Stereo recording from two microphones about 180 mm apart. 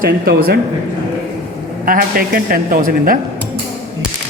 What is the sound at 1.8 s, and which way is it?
Speech, 55° right (ahead or behind).